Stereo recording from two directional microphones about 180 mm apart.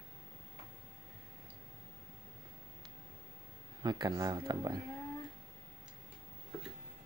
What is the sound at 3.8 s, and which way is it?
Speech, 25° right (ahead or behind).